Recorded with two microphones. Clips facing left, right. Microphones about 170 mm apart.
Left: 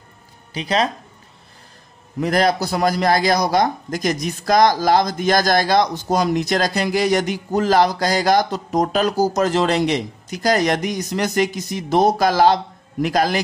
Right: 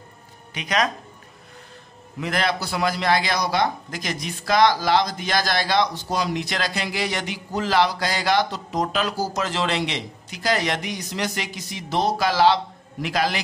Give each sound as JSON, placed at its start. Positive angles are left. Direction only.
{"t": 0.5, "sound": "speech", "side_deg": 30}
{"t": 2.1, "sound": "a man's voice", "side_deg": 40}